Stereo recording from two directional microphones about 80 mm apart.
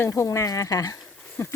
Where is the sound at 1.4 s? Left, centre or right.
Left.